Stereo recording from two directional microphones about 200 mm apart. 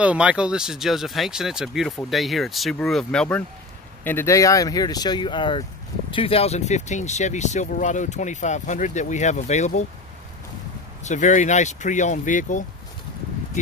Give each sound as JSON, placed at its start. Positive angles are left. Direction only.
{"t": 0.0, "sound": "speech", "side_deg": -5}
{"t": 11.1, "sound": "speech", "side_deg": 40}